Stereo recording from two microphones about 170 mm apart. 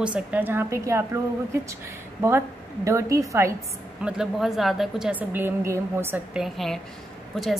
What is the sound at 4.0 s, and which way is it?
A woman's voice, 5° right (ahead or behind).